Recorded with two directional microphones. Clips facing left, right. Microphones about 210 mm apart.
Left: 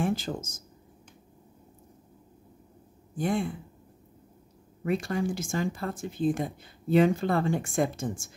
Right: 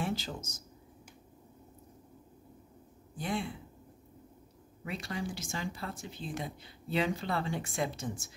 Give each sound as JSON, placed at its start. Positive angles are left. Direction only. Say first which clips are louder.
{"t": 0.0, "sound": "speech", "louder": "left 7 dB", "side_deg": 50}
{"t": 3.2, "sound": "speech", "louder": "left 7 dB", "side_deg": 50}
{"t": 4.8, "sound": "speech", "louder": "left 10 dB", "side_deg": 50}